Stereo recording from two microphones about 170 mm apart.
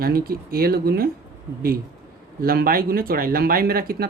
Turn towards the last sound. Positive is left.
turn(degrees=-60)  # may be behind; listen again after turning